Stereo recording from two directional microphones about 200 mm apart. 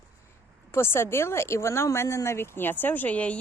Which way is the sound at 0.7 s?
15° left (ahead or behind).